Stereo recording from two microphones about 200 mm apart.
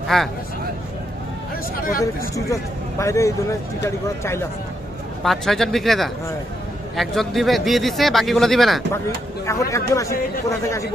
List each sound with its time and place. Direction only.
0.1 s speech: 5° left (ahead or behind)
2.3 s speech: 15° left (ahead or behind)
5.2 s speech: centre (ahead or behind)
9.5 s speech: 15° left (ahead or behind)